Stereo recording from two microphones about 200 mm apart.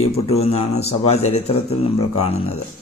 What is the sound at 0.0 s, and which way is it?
Speech, 30° left (ahead or behind).